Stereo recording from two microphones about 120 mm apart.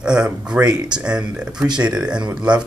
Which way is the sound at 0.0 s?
5° right (ahead or behind).